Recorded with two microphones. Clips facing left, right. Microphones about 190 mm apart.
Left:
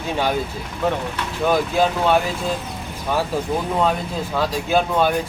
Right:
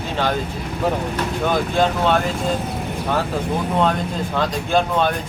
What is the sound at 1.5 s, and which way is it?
Speech, 5° left (ahead or behind).